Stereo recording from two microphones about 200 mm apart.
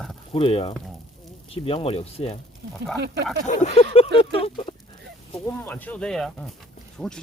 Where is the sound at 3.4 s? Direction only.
35° left (ahead or behind).